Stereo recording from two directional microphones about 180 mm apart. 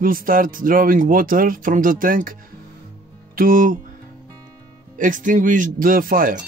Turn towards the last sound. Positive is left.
turn(degrees=-50)  # may be behind; listen again after turning